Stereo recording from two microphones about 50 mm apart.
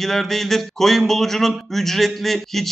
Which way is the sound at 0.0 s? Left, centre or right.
Centre.